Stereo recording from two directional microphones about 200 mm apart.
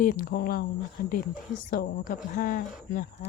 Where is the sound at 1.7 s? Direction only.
45° left (ahead or behind).